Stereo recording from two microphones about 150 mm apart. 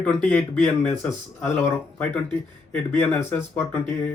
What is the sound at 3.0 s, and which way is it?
Speech, 15° left (ahead or behind).